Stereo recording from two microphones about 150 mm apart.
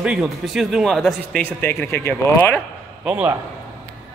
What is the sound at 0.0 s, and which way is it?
Speech, 5° right (ahead or behind).